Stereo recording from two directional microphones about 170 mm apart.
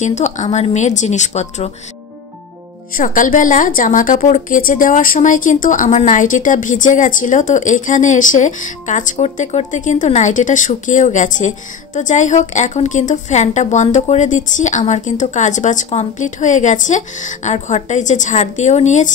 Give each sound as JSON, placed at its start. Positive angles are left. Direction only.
{"t": 0.0, "sound": "a woman's voice", "side_deg": 45}
{"t": 3.0, "sound": "a woman's voice", "side_deg": 50}